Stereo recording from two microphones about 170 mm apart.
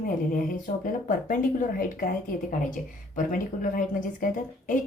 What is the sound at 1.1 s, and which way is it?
Speech, 50° left (ahead or behind).